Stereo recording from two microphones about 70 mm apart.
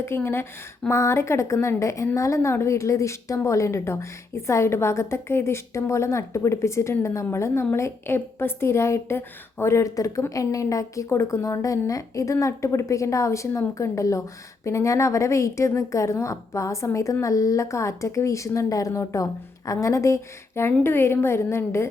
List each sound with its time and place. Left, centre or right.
0.0 s a woman's voice: left